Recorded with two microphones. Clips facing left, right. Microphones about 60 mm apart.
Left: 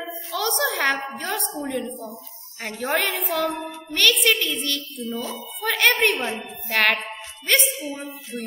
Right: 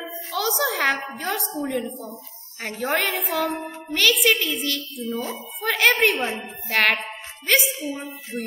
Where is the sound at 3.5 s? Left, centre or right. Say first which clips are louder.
Even; right.